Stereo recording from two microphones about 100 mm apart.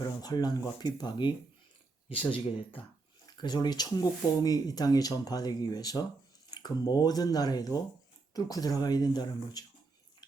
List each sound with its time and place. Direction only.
0.0 s speech: 40° left (ahead or behind)
2.3 s speech: 60° left (ahead or behind)
3.2 s speech: 45° left (ahead or behind)